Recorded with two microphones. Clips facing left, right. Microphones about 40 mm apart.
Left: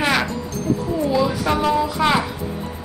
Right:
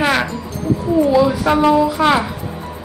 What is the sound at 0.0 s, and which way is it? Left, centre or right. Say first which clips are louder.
Music: right 3 dB; centre.